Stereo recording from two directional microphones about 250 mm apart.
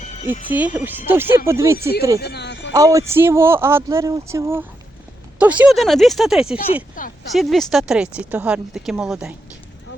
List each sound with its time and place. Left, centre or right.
0.0 s music: left
0.5 s speech: centre
2.2 s a sound: left
2.7 s speech: centre